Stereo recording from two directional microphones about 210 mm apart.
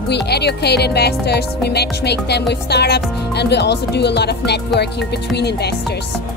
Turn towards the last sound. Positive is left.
turn(degrees=50)  # may be behind; listen again after turning